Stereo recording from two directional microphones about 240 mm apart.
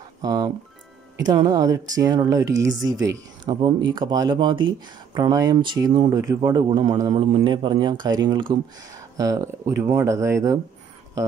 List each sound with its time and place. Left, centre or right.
0.2 s a man's voice: centre